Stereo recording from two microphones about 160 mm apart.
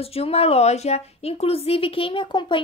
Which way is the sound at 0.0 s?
40° left (ahead or behind).